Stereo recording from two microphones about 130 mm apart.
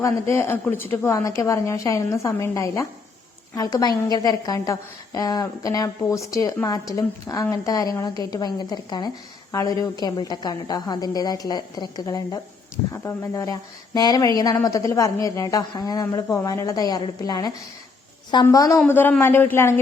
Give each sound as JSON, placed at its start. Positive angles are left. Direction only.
{"t": 0.0, "sound": "speech", "side_deg": 20}